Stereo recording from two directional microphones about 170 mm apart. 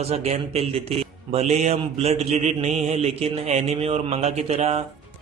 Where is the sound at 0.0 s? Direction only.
35° right (ahead or behind).